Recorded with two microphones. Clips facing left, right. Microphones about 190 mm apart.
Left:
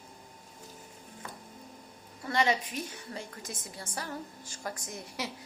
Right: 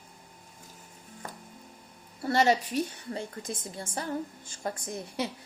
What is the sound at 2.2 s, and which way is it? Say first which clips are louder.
A woman's voice: right 4 dB; 40° right (ahead or behind).